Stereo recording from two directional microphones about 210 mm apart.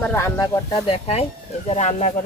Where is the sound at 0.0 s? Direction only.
10° left (ahead or behind).